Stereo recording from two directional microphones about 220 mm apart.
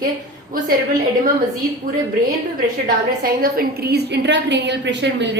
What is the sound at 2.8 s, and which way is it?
A woman's voice, 40° right (ahead or behind).